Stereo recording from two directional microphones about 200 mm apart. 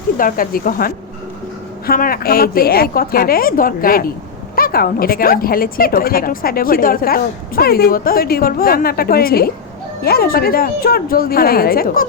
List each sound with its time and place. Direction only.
0.2 s a woman's voice: 45° left (ahead or behind)